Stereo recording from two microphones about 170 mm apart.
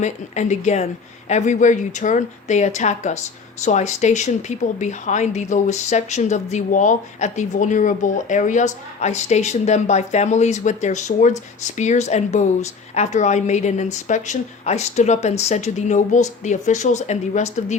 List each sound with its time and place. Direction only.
0.0 s speech: 45° left (ahead or behind)